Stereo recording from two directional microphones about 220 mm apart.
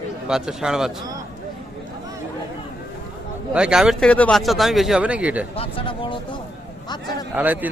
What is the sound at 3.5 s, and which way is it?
Speech, 5° right (ahead or behind).